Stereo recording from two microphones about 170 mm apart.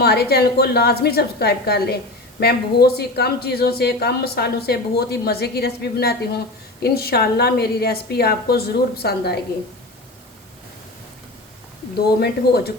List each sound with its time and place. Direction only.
0.0 s a woman's voice: 65° left (ahead or behind)
12.2 s a woman's voice: 65° left (ahead or behind)